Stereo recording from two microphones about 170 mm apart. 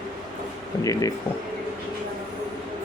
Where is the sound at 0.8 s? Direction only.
20° left (ahead or behind).